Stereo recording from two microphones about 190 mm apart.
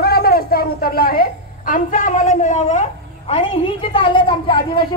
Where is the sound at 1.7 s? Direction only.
45° left (ahead or behind).